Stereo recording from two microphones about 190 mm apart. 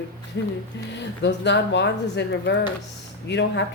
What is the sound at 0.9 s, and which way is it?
Speech, 65° left (ahead or behind).